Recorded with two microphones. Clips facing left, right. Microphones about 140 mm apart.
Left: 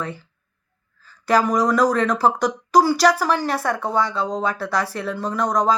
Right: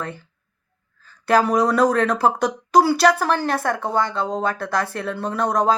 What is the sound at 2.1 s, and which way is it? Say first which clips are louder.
A woman's voice: even; 55° right (ahead or behind).